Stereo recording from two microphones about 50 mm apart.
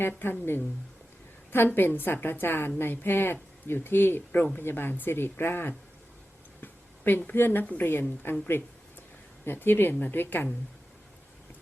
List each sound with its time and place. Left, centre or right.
0.2 s speech: left
6.6 s a sound: left
7.3 s a woman's voice: left